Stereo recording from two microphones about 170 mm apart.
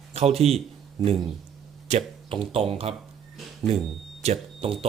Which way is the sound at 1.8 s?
40° right (ahead or behind).